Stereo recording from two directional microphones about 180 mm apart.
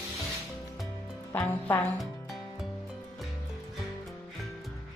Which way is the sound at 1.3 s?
10° left (ahead or behind).